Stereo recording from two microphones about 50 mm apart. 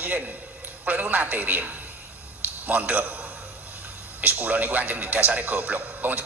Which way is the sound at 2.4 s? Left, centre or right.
Right.